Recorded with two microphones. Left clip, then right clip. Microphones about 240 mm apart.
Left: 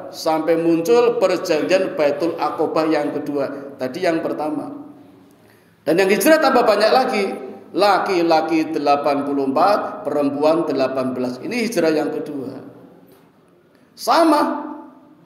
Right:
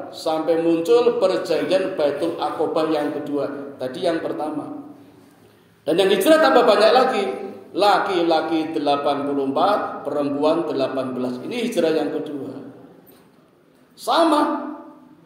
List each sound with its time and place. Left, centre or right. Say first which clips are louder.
0.1 s a man's voice: left 3 dB; left
5.9 s a man's voice: left 1 dB; left
13.9 s a man's voice: left 3 dB; left